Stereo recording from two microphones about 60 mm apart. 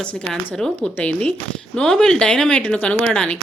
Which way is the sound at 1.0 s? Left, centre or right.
Left.